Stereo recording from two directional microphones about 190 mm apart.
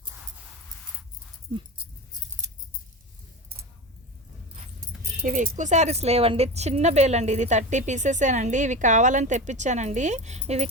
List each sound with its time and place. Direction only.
5.2 s speech: 45° right (ahead or behind)